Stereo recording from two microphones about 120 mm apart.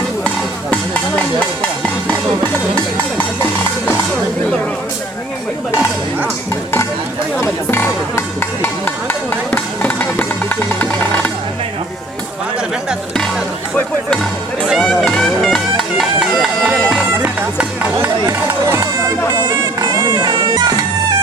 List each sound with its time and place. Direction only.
0.7 s a sound: 10° left (ahead or behind)
7.4 s music: 20° left (ahead or behind)
14.8 s music: 5° left (ahead or behind)
16.6 s bagpipes: 25° right (ahead or behind)
17.4 s music: 20° right (ahead or behind)
19.5 s a sound: 35° right (ahead or behind)
20.2 s bagpipes: 40° right (ahead or behind)